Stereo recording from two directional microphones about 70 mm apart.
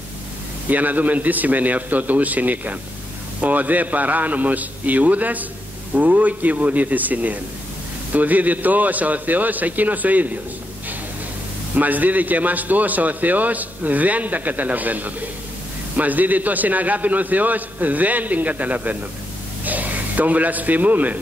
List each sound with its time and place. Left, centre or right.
0.7 s a man's voice: right
11.7 s a man's voice: right